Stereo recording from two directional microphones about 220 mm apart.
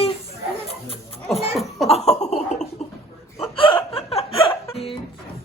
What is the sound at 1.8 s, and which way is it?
Laughter, 30° left (ahead or behind).